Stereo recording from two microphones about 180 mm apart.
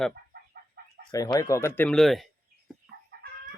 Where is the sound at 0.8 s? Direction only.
60° right (ahead or behind).